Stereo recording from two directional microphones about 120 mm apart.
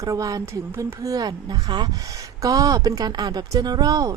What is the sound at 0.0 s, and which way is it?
Speech, 30° right (ahead or behind).